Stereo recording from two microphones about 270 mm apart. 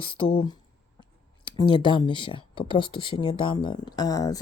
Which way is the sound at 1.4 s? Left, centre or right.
Centre.